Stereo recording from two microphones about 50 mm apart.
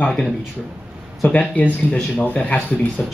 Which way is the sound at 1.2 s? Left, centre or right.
Left.